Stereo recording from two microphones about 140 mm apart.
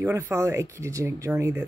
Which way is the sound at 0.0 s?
20° right (ahead or behind).